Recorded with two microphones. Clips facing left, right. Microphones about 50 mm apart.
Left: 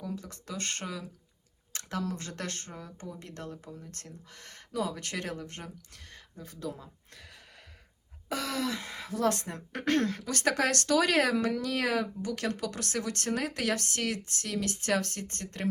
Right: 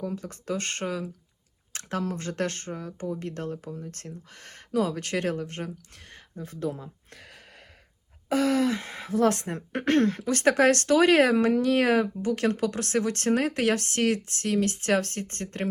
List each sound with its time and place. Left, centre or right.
0.0 s speech: right